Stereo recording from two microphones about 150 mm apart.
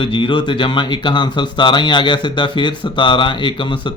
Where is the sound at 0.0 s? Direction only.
35° left (ahead or behind).